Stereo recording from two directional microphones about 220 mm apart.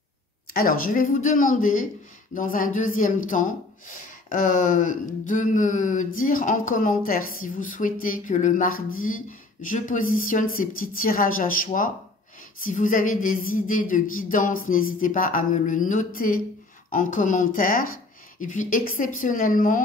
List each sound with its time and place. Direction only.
0.5 s speech: 40° left (ahead or behind)